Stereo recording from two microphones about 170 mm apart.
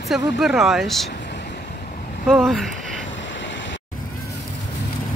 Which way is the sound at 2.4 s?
Centre (ahead or behind).